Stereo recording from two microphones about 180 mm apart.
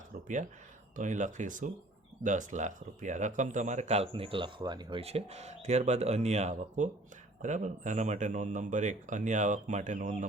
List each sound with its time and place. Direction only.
0.9 s speech: 45° right (ahead or behind)